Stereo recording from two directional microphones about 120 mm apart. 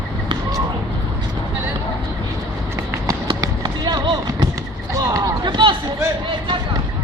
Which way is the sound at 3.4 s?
35° right (ahead or behind).